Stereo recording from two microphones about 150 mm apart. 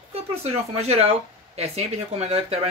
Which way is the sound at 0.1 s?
40° right (ahead or behind).